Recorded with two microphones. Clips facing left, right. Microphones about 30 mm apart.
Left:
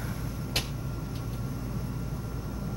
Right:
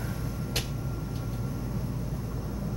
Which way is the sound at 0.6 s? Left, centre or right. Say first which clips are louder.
Left 2 dB; left.